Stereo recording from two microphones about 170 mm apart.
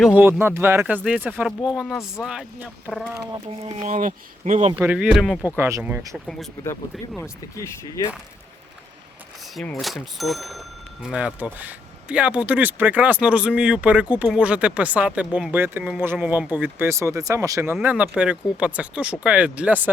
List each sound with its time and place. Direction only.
0.0 s speech: 10° right (ahead or behind)
3.5 s speech: 35° right (ahead or behind)
4.8 s speech: 10° right (ahead or behind)
5.5 s speech: 15° right (ahead or behind)
6.1 s speech: centre (ahead or behind)
7.2 s speech: 20° left (ahead or behind)
9.8 s speech: centre (ahead or behind)